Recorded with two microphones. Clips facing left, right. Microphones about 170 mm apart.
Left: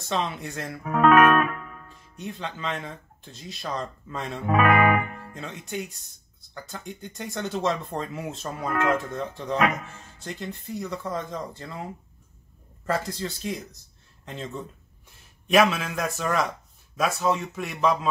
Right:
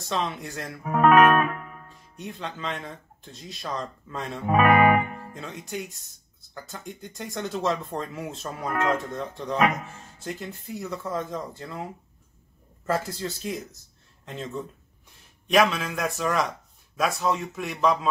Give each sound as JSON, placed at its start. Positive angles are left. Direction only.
{"t": 0.0, "sound": "speech", "side_deg": 0}
{"t": 0.8, "sound": "music", "side_deg": -20}
{"t": 2.1, "sound": "speech", "side_deg": 0}
{"t": 4.5, "sound": "speech", "side_deg": -15}
{"t": 5.3, "sound": "speech", "side_deg": 0}
{"t": 12.8, "sound": "speech", "side_deg": 0}